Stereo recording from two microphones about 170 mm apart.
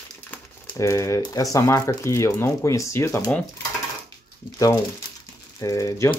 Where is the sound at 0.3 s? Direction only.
20° left (ahead or behind).